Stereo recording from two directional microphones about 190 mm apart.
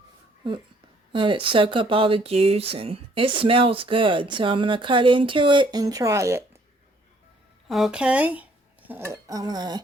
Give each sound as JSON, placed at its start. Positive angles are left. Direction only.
{"t": 1.1, "sound": "speech", "side_deg": -25}
{"t": 7.7, "sound": "speech", "side_deg": -5}